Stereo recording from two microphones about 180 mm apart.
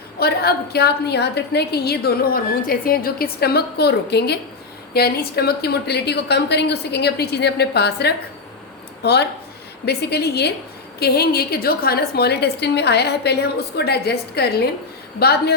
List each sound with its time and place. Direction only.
0.2 s a woman's voice: 60° left (ahead or behind)